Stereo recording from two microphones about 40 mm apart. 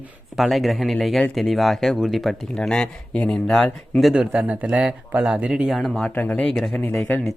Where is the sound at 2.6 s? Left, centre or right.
Left.